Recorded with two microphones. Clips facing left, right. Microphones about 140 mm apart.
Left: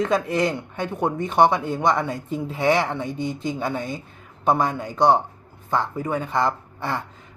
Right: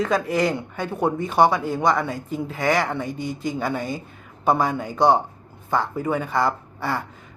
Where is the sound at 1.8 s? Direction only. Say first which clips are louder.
Even; centre (ahead or behind).